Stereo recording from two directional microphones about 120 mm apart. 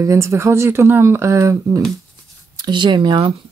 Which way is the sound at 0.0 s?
25° right (ahead or behind).